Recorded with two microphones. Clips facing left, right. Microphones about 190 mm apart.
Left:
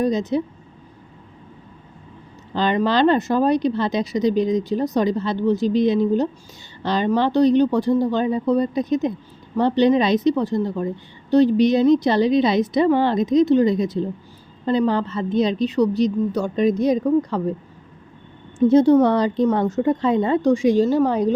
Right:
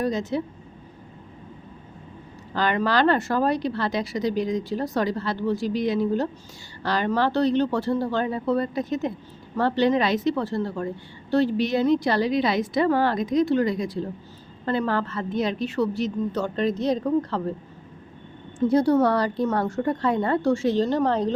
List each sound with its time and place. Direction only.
0.0 s a woman's voice: 20° left (ahead or behind)
2.5 s a woman's voice: 20° left (ahead or behind)
18.7 s a woman's voice: 20° left (ahead or behind)